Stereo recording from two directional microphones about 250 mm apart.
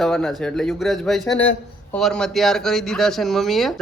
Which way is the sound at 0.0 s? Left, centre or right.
Centre.